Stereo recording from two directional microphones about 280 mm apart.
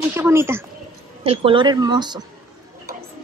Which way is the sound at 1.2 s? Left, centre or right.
Centre.